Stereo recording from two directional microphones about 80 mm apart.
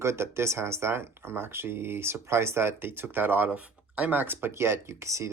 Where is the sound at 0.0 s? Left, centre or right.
Right.